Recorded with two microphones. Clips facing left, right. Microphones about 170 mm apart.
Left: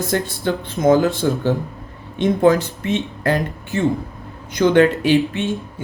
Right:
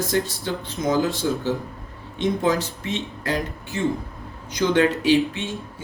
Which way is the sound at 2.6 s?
55° left (ahead or behind).